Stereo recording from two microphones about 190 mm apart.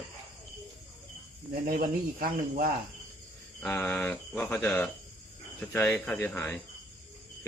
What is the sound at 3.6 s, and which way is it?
Speech, 10° left (ahead or behind).